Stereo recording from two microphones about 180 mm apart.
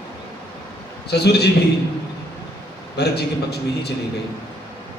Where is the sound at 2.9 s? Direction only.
65° left (ahead or behind).